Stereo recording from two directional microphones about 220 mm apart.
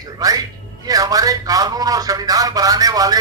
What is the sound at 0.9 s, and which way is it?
Speech, 15° right (ahead or behind).